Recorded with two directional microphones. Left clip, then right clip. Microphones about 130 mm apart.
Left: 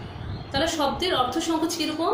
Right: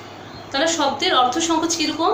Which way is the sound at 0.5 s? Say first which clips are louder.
Right 5 dB; 35° left (ahead or behind).